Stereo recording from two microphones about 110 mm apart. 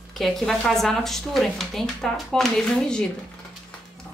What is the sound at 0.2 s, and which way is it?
A woman's voice, 5° left (ahead or behind).